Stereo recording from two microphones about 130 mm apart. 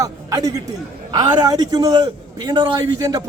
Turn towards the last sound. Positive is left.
turn(degrees=-30)  # may be behind; listen again after turning